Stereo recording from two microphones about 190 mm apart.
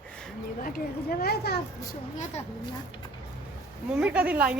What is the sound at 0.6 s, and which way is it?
Speech, 50° left (ahead or behind).